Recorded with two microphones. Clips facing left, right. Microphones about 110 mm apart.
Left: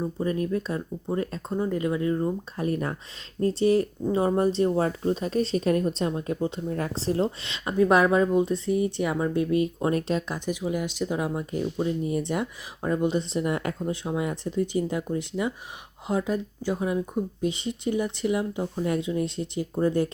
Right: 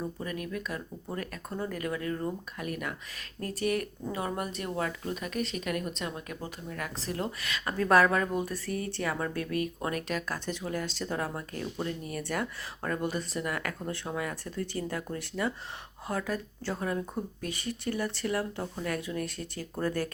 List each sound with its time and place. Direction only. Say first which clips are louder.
0.0 s speech: left 9 dB; 30° left (ahead or behind)